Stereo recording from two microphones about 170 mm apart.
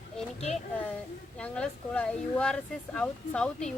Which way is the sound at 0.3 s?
40° left (ahead or behind).